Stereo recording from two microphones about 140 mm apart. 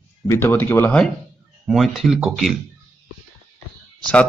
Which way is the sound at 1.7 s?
Centre (ahead or behind).